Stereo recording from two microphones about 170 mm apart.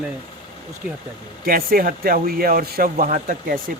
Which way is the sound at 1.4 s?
60° right (ahead or behind).